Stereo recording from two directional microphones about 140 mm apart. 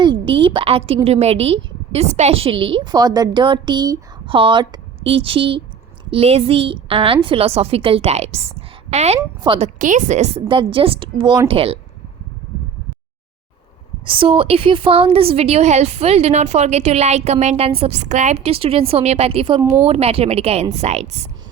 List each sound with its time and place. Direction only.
0.0 s a sound: 35° right (ahead or behind)
1.0 s a woman's voice: 50° right (ahead or behind)
9.7 s a woman's voice: 65° right (ahead or behind); by 11.8 s 40° right (ahead or behind)
14.0 s a woman's voice: 40° right (ahead or behind)